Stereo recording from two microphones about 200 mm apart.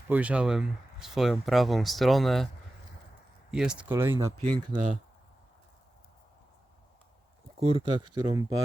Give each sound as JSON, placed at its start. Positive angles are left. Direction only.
{"t": 0.1, "sound": "speech", "side_deg": -5}
{"t": 3.5, "sound": "speech", "side_deg": -5}
{"t": 4.4, "sound": "speech", "side_deg": -25}
{"t": 7.6, "sound": "speech", "side_deg": -30}